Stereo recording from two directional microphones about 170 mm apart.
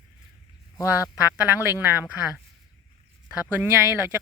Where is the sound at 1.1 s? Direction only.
10° right (ahead or behind).